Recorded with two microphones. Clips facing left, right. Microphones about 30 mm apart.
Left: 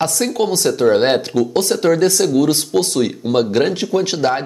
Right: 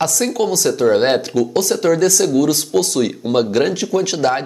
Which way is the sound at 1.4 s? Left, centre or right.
Left.